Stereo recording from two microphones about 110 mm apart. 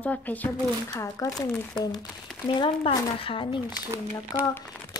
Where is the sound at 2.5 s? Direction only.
55° left (ahead or behind).